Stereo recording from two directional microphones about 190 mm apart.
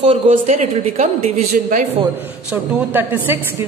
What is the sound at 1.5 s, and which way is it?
Speech, 45° right (ahead or behind).